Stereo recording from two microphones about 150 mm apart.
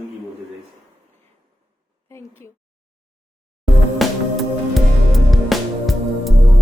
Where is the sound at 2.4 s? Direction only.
15° left (ahead or behind).